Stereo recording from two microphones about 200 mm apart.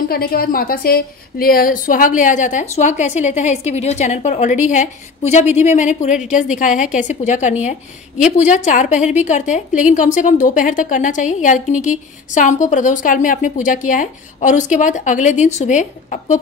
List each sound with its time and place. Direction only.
0.1 s a woman's voice: 50° left (ahead or behind)